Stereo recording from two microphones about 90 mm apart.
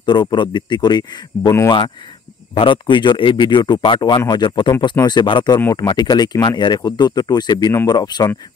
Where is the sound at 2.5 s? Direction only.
65° left (ahead or behind).